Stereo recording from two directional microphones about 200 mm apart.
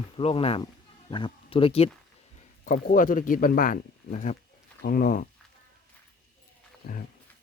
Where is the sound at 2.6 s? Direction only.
40° left (ahead or behind).